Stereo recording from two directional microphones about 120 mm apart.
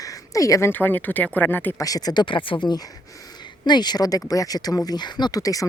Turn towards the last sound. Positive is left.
turn(degrees=30)  # may be behind; listen again after turning